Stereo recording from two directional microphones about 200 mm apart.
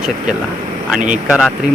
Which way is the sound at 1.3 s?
5° right (ahead or behind).